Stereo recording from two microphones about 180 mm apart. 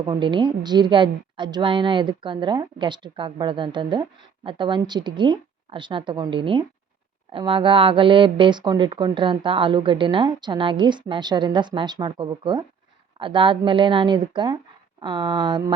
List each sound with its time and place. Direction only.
0.0 s speech: 25° right (ahead or behind)